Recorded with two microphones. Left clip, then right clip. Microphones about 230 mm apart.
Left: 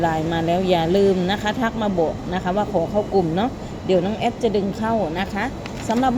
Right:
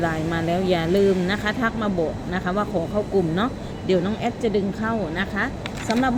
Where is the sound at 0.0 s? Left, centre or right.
Centre.